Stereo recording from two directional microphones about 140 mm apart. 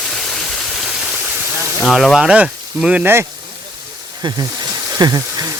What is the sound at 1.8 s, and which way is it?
Speech, centre (ahead or behind).